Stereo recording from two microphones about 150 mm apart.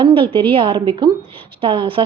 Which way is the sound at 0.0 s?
35° right (ahead or behind).